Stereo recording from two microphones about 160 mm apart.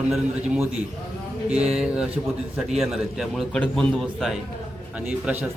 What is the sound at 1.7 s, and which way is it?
A man's voice, 5° right (ahead or behind).